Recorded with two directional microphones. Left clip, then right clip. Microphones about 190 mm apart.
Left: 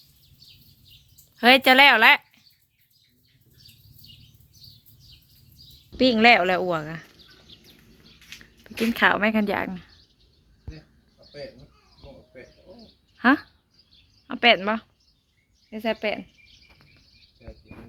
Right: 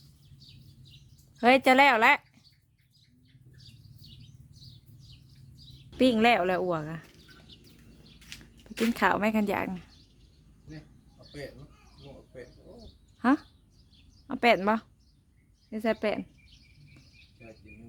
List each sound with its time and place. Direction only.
1.4 s speech: 5° right (ahead or behind)
6.0 s speech: 5° right (ahead or behind)
8.6 s speech: 10° right (ahead or behind)
13.1 s a sound: centre (ahead or behind)
14.3 s a woman's voice: 15° right (ahead or behind)